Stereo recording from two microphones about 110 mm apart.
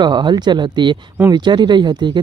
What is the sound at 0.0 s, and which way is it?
Speech, 45° right (ahead or behind).